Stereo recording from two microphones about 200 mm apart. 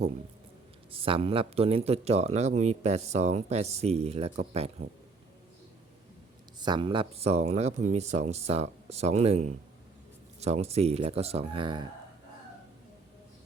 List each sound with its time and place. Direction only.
0.9 s a man's voice: 25° right (ahead or behind)
6.6 s a man's voice: 20° right (ahead or behind)